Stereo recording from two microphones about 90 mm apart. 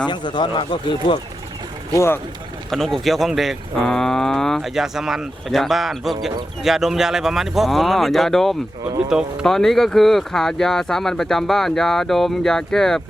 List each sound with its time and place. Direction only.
0.1 s speech: 60° left (ahead or behind)
2.0 s speech: 25° left (ahead or behind)
2.6 s moo: 5° left (ahead or behind)
9.0 s speech: 5° right (ahead or behind)
9.5 s moo: 5° left (ahead or behind)